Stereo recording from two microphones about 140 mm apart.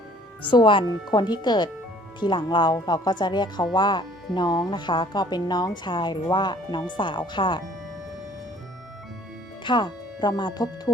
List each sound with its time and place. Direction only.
0.5 s speech: 35° left (ahead or behind)
9.6 s speech: 30° left (ahead or behind)